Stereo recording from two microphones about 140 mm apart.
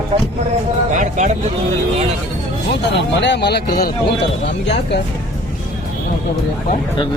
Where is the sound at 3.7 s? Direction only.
90° left.